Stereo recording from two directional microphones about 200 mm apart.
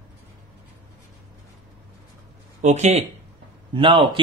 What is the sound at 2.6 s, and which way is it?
A man's voice, 35° right (ahead or behind).